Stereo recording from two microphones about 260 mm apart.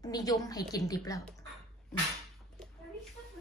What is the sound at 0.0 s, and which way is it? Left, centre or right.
A woman's voice, centre.